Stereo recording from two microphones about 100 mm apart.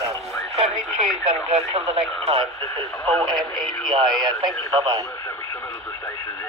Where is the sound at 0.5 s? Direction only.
90° right.